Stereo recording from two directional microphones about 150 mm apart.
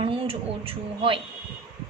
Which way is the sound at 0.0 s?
40° right (ahead or behind).